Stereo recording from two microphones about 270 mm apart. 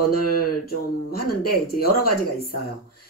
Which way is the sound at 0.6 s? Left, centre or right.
Left.